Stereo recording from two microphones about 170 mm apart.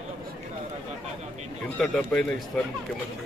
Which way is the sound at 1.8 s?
5° left (ahead or behind).